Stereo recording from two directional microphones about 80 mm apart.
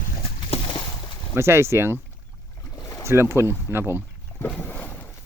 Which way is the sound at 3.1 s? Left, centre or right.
Right.